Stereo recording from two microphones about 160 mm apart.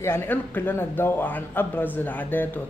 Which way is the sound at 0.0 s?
15° left (ahead or behind).